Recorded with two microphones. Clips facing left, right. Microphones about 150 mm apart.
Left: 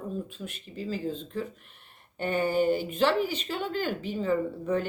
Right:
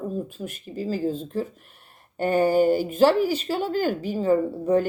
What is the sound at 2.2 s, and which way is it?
Speech, 40° right (ahead or behind).